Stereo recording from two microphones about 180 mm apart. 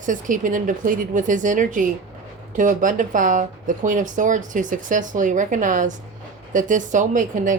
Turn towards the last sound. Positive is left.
turn(degrees=-45)  # may be behind; listen again after turning